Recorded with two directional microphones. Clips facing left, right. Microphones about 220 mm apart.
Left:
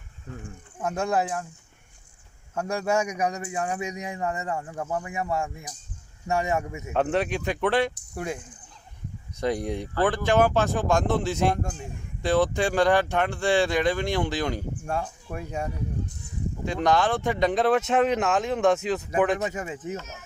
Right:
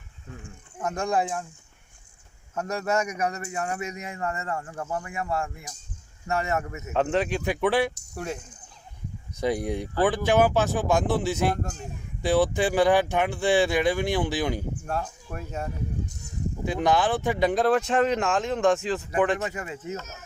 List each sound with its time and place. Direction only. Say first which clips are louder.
0.8 s speech: even; 10° left (ahead or behind)
2.6 s speech: left 1 dB; 10° left (ahead or behind)
7.4 s speech: even; 5° right (ahead or behind)
8.1 s speech: left 1 dB; 10° left (ahead or behind)
9.4 s speech: right 1 dB; 5° right (ahead or behind)
14.8 s speech: left 3 dB; 10° left (ahead or behind)
16.6 s speech: even; 5° right (ahead or behind)
19.5 s speech: left 1 dB; 15° left (ahead or behind)